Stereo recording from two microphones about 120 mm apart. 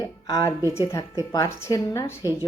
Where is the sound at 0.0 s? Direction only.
25° left (ahead or behind).